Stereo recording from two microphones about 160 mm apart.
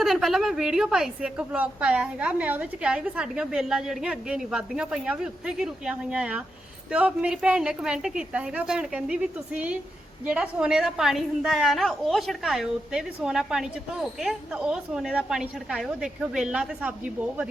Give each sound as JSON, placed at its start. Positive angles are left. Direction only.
{"t": 0.0, "sound": "a woman's voice", "side_deg": 0}